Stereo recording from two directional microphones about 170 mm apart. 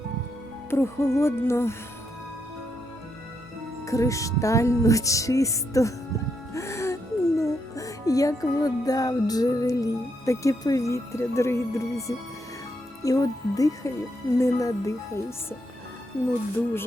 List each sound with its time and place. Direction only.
0.7 s music: 15° left (ahead or behind)
3.8 s music: 20° left (ahead or behind)
6.5 s speech: 15° left (ahead or behind)
13.0 s music: 20° left (ahead or behind)